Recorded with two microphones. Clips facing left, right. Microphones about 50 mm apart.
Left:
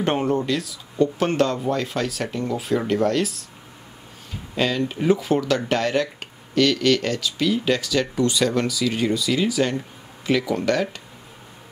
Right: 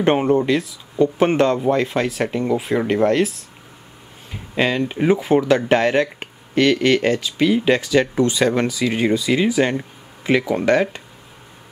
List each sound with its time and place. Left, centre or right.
0.0 s speech: right
4.3 s speech: right